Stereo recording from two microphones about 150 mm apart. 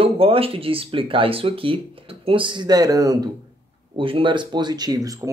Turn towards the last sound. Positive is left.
turn(degrees=-25)  # may be behind; listen again after turning